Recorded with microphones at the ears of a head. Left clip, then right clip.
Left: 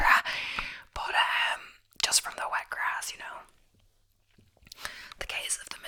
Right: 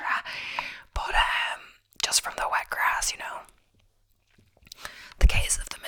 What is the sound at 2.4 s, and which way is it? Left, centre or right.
Whispering, right.